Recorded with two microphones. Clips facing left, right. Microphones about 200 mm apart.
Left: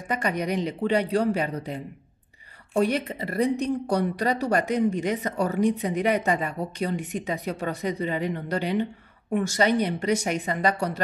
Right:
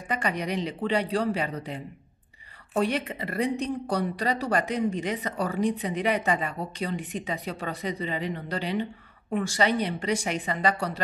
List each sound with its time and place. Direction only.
0.1 s speech: 45° left (ahead or behind)
2.8 s speech: 40° left (ahead or behind)